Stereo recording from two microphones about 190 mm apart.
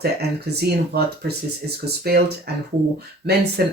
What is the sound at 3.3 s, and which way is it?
Speech, 60° right (ahead or behind).